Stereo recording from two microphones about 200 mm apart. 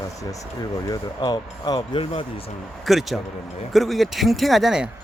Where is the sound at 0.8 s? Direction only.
20° left (ahead or behind).